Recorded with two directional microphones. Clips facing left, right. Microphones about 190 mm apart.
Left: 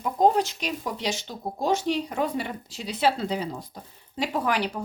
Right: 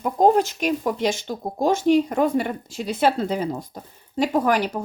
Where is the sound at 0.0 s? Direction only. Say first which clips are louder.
Right 4 dB; 50° right (ahead or behind).